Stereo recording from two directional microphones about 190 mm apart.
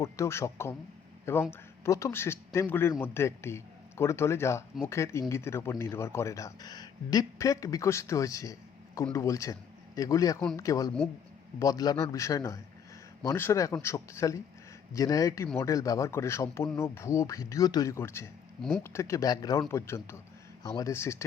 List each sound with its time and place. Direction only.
0.0 s speech: 15° left (ahead or behind)